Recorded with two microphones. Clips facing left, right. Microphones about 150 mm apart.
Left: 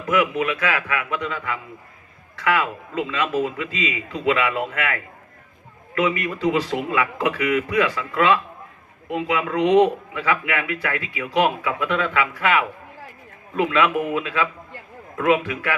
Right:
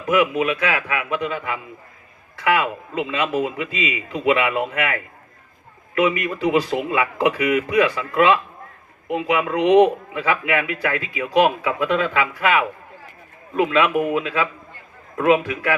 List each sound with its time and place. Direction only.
0.0 s a man's voice: 30° right (ahead or behind)